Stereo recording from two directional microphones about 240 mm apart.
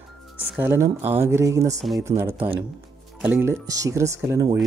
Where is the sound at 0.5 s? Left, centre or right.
Centre.